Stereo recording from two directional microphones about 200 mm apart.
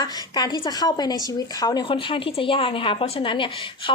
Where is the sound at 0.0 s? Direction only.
20° left (ahead or behind).